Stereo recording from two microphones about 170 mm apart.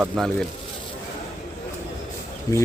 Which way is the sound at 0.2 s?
Centre (ahead or behind).